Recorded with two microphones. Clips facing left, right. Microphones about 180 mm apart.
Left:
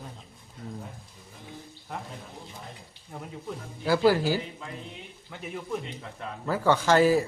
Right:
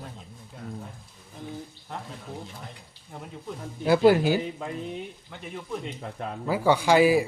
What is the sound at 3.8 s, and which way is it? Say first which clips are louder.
Speech: right 3 dB; 20° right (ahead or behind).